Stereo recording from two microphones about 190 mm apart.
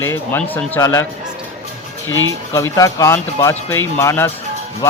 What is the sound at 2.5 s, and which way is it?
Speech, 15° left (ahead or behind).